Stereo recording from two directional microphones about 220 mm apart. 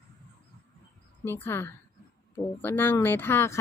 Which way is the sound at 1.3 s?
10° left (ahead or behind).